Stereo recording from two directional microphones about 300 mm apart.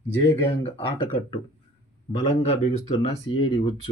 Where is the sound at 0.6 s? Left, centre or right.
Centre.